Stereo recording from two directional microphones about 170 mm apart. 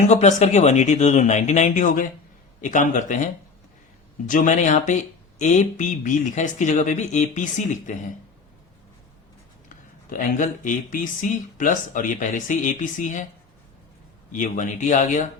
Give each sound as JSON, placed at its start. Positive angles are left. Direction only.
{"t": 0.1, "sound": "speech", "side_deg": 45}
{"t": 4.3, "sound": "speech", "side_deg": 50}
{"t": 9.6, "sound": "speech", "side_deg": 50}
{"t": 14.3, "sound": "speech", "side_deg": 45}